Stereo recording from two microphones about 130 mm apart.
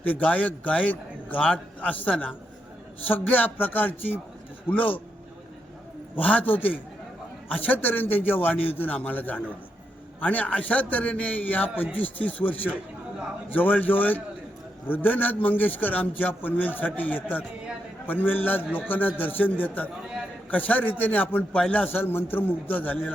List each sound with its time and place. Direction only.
0.0 s a man's voice: 10° left (ahead or behind)
6.1 s a man's voice: 10° left (ahead or behind)